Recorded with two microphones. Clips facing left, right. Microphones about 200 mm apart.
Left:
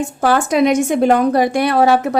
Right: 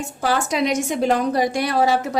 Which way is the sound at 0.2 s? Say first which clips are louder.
Left 6 dB; 55° left (ahead or behind).